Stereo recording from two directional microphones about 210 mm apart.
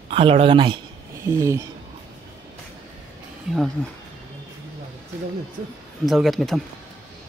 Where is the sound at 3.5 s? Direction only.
Centre (ahead or behind).